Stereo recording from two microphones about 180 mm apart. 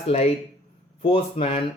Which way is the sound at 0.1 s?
35° left (ahead or behind).